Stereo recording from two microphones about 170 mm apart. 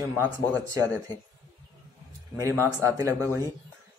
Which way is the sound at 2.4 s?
15° right (ahead or behind).